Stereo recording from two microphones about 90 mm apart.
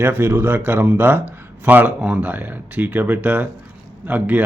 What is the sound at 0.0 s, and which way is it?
Speech, 25° right (ahead or behind).